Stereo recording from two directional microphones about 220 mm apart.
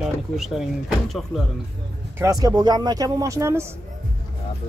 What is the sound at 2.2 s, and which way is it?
Speech, 15° right (ahead or behind).